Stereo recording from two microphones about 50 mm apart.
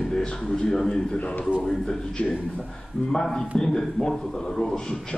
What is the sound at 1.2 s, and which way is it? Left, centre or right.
Speech, left.